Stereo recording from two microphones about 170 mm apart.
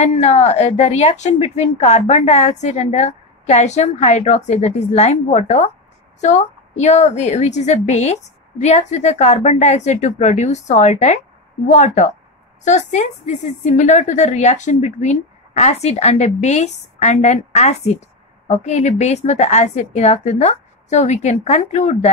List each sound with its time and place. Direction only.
0.0 s a woman's voice: 40° left (ahead or behind)